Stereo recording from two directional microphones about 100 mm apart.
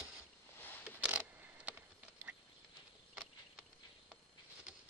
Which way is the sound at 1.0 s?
10° right (ahead or behind).